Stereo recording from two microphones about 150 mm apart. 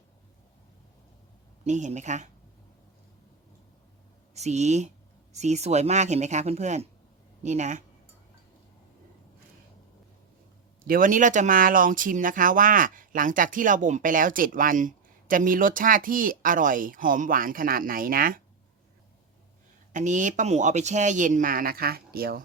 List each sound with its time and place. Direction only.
1.6 s speech: 50° right (ahead or behind)
4.4 s speech: 50° right (ahead or behind)
10.8 s speech: 65° right (ahead or behind)
19.9 s speech: 55° right (ahead or behind); by 22.4 s 90° right